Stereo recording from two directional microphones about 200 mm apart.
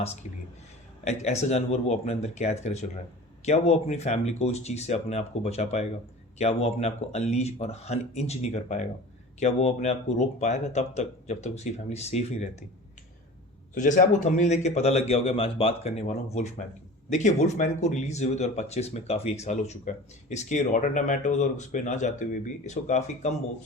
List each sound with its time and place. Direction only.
1.0 s speech: 35° left (ahead or behind)
13.7 s speech: 40° left (ahead or behind)